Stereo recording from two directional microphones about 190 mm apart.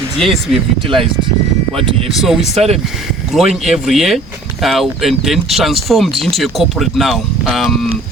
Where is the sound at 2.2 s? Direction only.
Centre (ahead or behind).